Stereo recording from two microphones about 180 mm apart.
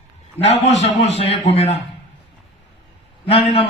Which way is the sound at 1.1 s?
35° left (ahead or behind).